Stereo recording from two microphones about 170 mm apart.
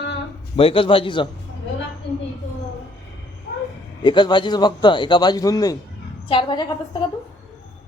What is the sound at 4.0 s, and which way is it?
A man's voice, 25° left (ahead or behind).